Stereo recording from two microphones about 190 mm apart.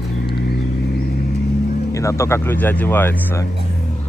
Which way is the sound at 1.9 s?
15° left (ahead or behind).